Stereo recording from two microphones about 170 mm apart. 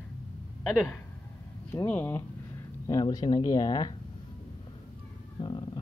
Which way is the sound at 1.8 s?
10° left (ahead or behind).